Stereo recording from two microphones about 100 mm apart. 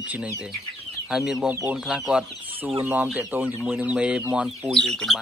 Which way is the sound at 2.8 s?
15° right (ahead or behind).